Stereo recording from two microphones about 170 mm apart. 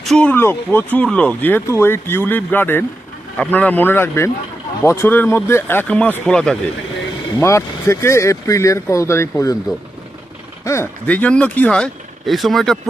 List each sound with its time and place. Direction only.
0.0 s speech: 5° left (ahead or behind)
7.3 s speech: 15° left (ahead or behind)
10.6 s speech: 15° left (ahead or behind)